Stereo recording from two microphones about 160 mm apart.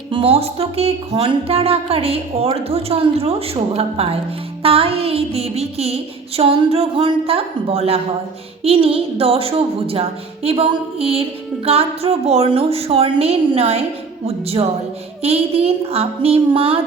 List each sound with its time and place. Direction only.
0.1 s a woman's voice: 35° right (ahead or behind)